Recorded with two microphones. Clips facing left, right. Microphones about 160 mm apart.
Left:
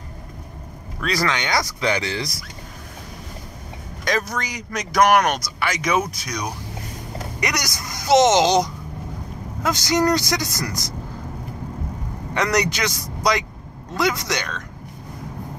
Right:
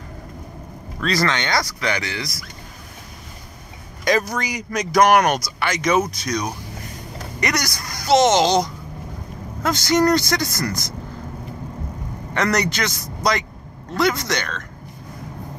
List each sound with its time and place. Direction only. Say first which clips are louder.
1.0 s speech: right 2 dB; 10° left (ahead or behind)
1.8 s speech: left 2 dB; 25° left (ahead or behind)
4.0 s speech: right 4 dB; 5° right (ahead or behind); by 10.8 s 15° left (ahead or behind)
12.4 s speech: even; 15° left (ahead or behind)